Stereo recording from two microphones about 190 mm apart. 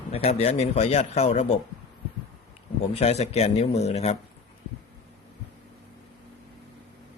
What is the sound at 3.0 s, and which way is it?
Speech, 35° left (ahead or behind).